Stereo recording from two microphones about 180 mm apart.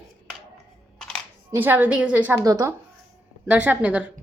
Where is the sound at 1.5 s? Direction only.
10° right (ahead or behind).